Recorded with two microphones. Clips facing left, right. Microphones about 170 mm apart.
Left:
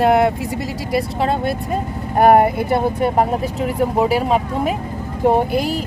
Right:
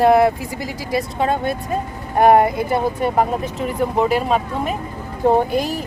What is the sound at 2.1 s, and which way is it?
Speech, 5° left (ahead or behind).